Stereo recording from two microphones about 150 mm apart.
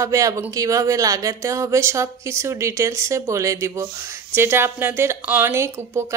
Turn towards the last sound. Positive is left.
turn(degrees=-20)  # may be behind; listen again after turning